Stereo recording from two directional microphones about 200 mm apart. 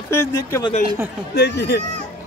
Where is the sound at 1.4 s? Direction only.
55° left (ahead or behind).